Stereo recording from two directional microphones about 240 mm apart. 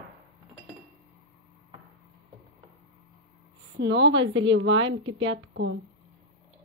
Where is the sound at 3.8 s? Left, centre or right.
Right.